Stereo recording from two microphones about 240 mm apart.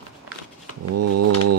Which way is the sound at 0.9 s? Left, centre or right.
Right.